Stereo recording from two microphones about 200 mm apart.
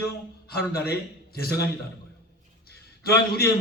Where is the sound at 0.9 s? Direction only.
50° left (ahead or behind).